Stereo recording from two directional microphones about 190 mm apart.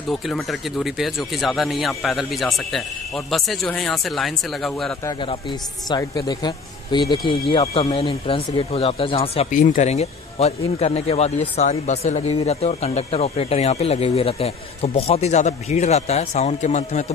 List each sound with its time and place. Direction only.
0.1 s speech: centre (ahead or behind)
5.2 s speech: 25° left (ahead or behind)